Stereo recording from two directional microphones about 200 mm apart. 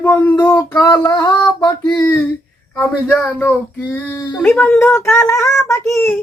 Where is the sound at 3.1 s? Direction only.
5° left (ahead or behind).